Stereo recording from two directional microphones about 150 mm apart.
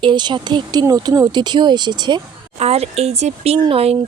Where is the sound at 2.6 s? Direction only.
45° right (ahead or behind).